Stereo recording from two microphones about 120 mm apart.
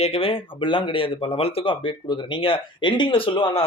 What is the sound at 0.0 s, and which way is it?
Speech, 50° left (ahead or behind).